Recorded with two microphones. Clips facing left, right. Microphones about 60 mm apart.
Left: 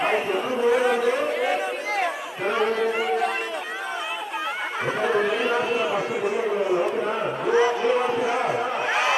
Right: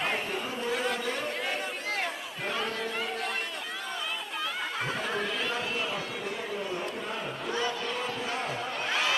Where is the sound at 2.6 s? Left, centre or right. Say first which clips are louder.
Left 11 dB; left.